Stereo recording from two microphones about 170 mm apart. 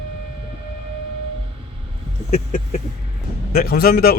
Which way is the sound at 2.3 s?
40° left (ahead or behind).